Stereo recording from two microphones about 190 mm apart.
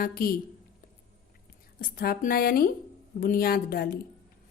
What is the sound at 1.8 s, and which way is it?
Speech, 50° left (ahead or behind).